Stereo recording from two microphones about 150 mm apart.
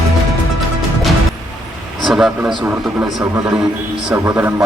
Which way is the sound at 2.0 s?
Centre (ahead or behind).